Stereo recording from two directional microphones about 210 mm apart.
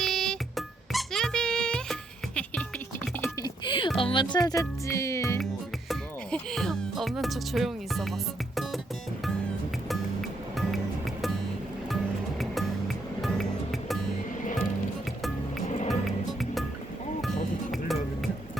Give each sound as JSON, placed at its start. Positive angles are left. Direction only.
{"t": 0.0, "sound": "music", "side_deg": 0}
{"t": 3.4, "sound": "music", "side_deg": 20}
{"t": 5.9, "sound": "speech", "side_deg": 0}
{"t": 9.9, "sound": "music", "side_deg": 0}
{"t": 12.4, "sound": "music", "side_deg": 0}
{"t": 15.6, "sound": "music", "side_deg": 30}
{"t": 15.9, "sound": "music", "side_deg": 0}